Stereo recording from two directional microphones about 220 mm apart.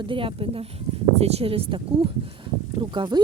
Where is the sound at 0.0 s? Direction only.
25° right (ahead or behind).